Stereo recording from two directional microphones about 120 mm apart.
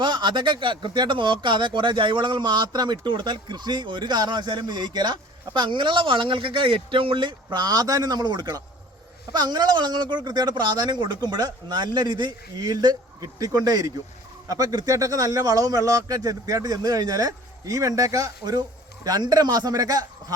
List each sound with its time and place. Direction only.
0.0 s speech: 40° right (ahead or behind)